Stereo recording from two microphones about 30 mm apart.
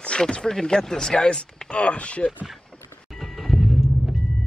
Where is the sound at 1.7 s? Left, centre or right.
Left.